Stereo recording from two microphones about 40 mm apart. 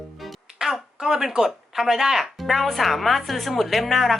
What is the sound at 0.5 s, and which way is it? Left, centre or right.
Speech, centre.